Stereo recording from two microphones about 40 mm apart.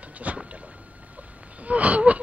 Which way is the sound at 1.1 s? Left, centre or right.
Right.